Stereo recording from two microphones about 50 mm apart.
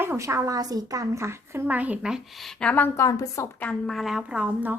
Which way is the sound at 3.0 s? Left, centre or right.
Left.